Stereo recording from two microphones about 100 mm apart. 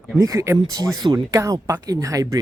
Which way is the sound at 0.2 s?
35° right (ahead or behind).